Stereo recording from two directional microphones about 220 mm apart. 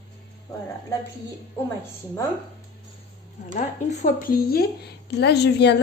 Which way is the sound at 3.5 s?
35° left (ahead or behind).